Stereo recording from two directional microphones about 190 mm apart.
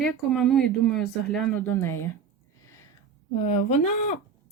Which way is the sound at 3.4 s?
35° left (ahead or behind).